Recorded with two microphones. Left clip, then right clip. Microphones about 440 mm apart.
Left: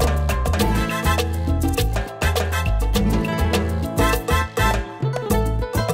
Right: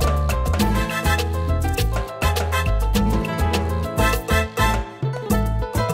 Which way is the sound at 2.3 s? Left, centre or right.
Left.